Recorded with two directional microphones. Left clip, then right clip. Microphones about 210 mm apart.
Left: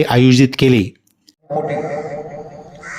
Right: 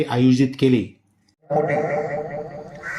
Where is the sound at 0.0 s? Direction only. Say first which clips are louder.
Left 6 dB; 45° left (ahead or behind).